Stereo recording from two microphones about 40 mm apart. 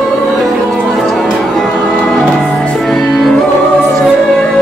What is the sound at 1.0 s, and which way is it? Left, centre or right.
Music, centre.